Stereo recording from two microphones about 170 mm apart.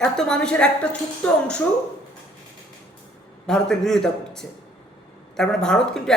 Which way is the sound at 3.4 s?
5° left (ahead or behind).